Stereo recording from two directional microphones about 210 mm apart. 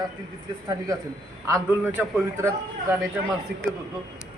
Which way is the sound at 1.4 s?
15° right (ahead or behind).